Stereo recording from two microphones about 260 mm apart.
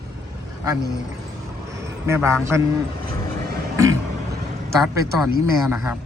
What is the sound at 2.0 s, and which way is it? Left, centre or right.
Speech, centre.